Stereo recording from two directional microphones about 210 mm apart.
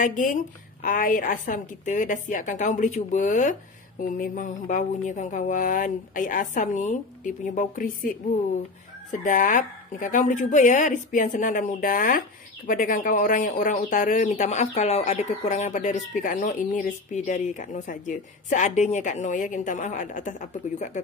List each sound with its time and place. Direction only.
0.0 s speech: 40° left (ahead or behind)